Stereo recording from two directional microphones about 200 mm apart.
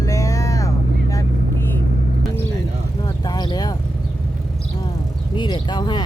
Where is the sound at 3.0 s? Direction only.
20° left (ahead or behind).